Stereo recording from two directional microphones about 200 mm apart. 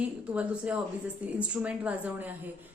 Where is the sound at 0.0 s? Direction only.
5° right (ahead or behind).